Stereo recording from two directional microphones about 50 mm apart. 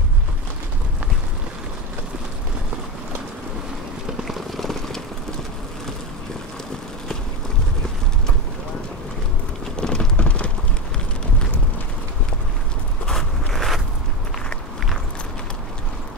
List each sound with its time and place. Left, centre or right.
4.2 s rain on surface: centre
9.8 s a sound: centre
10.1 s rain: left
13.0 s zipper: centre